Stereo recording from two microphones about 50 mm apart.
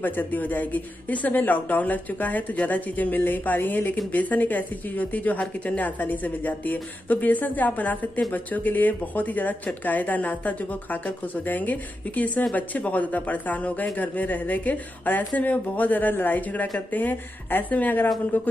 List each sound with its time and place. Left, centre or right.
0.0 s speech: left